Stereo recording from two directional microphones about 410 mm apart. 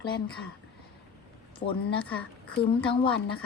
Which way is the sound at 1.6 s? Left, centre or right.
Centre.